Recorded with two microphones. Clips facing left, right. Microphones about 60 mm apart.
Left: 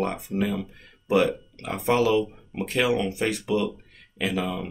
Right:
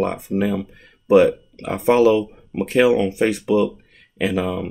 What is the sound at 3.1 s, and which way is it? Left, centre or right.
Speech, right.